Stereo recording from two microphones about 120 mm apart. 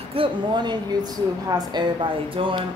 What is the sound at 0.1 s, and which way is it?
Speech, 45° right (ahead or behind).